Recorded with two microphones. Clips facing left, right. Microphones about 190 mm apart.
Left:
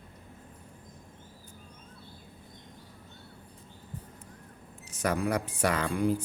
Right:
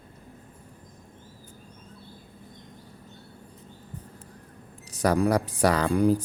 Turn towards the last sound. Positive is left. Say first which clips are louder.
# right 6 dB
turn(degrees=-35)  # may be behind; listen again after turning